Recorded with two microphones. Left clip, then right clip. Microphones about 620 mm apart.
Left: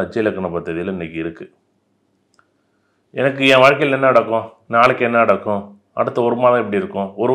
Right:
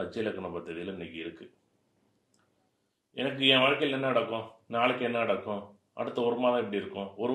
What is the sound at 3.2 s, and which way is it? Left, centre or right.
Speech, left.